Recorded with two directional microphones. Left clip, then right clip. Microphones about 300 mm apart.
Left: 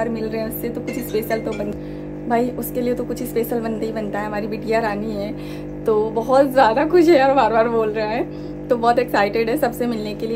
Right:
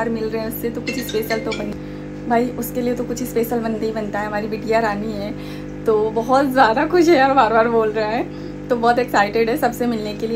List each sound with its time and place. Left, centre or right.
0.0 s a woman's voice: centre
2.2 s a woman's voice: centre